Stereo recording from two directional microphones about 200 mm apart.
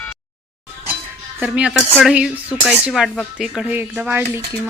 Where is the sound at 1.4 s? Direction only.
5° right (ahead or behind).